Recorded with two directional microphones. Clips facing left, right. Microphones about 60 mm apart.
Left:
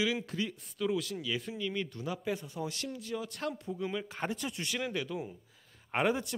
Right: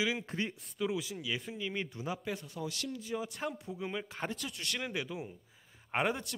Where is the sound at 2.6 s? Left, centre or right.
Left.